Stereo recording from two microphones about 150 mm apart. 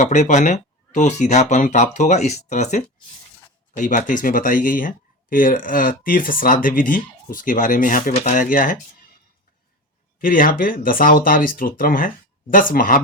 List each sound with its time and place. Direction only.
0.0 s speech: 55° left (ahead or behind)
8.1 s speech: 50° left (ahead or behind)
10.2 s speech: 65° left (ahead or behind)